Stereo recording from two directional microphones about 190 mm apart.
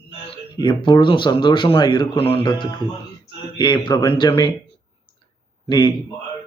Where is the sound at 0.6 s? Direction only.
25° left (ahead or behind).